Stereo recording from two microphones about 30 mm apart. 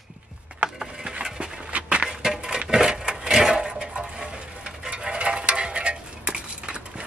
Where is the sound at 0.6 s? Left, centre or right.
Right.